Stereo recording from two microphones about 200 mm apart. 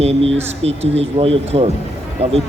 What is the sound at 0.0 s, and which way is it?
Speech, 30° right (ahead or behind).